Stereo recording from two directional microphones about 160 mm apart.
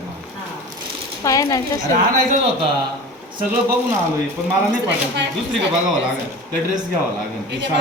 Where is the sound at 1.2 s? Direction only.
20° left (ahead or behind).